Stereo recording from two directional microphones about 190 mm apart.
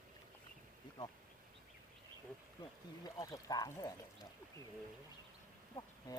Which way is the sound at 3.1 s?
20° left (ahead or behind).